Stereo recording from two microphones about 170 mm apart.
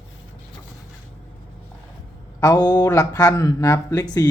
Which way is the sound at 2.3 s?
25° left (ahead or behind).